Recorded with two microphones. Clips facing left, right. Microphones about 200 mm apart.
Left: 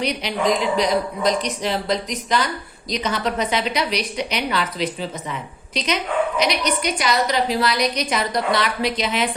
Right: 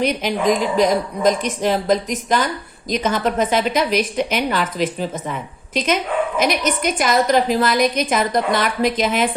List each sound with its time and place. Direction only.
0.0 s a woman's voice: 50° right (ahead or behind)